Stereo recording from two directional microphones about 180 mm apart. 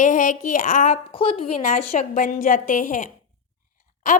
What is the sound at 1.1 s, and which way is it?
Speech, 30° left (ahead or behind).